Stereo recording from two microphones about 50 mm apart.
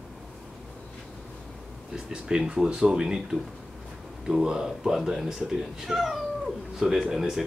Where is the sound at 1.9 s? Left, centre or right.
Centre.